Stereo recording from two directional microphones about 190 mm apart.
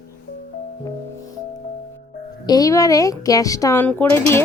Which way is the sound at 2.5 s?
20° left (ahead or behind).